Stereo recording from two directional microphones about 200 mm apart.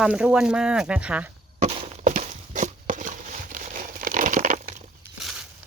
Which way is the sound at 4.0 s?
40° right (ahead or behind).